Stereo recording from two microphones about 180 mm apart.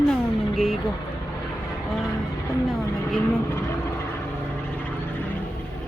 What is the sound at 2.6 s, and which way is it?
Vehicle, centre (ahead or behind).